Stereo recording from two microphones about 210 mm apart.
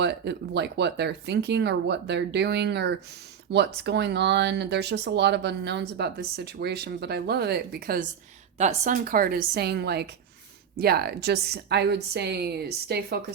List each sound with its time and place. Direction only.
0.0 s speech: 55° right (ahead or behind)
8.5 s speech: 35° right (ahead or behind); by 13.1 s 50° right (ahead or behind)